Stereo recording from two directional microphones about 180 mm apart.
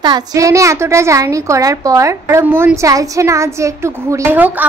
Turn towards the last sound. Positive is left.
turn(degrees=-10)  # may be behind; listen again after turning